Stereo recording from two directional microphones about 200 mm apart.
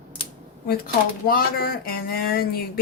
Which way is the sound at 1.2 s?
50° left (ahead or behind).